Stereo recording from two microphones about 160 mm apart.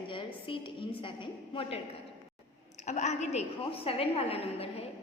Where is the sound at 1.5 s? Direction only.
35° left (ahead or behind).